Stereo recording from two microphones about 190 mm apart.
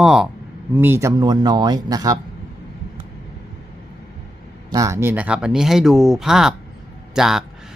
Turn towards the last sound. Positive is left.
turn(degrees=0)  # may be behind; listen again after turning